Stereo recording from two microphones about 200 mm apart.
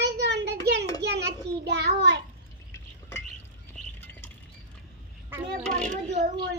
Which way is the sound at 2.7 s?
15° left (ahead or behind).